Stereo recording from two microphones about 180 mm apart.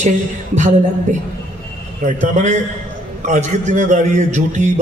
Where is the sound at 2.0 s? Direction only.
40° right (ahead or behind).